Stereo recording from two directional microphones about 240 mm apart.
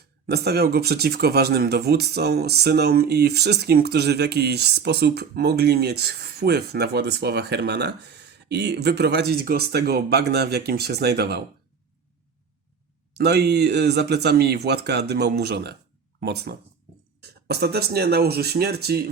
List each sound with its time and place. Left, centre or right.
0.3 s speech: right
13.1 s speech: right